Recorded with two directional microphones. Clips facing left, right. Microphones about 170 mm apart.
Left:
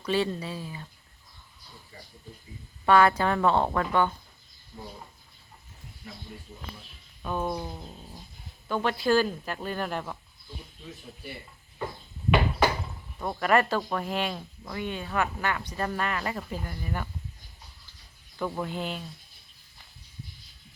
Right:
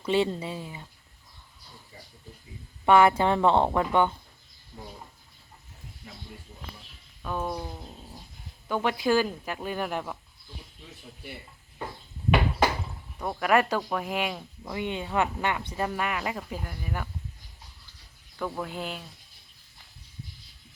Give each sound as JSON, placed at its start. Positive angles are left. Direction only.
{"t": 0.0, "sound": "speech", "side_deg": -20}
{"t": 2.8, "sound": "speech", "side_deg": -20}
{"t": 7.2, "sound": "a sound", "side_deg": 0}
{"t": 8.6, "sound": "speech", "side_deg": -10}
{"t": 13.1, "sound": "speech", "side_deg": -5}
{"t": 18.3, "sound": "a sound", "side_deg": 0}